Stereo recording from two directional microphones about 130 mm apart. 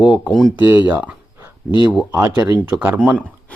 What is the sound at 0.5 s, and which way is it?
Speech, 15° right (ahead or behind).